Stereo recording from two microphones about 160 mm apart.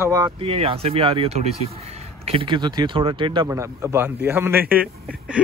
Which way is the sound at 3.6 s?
15° right (ahead or behind).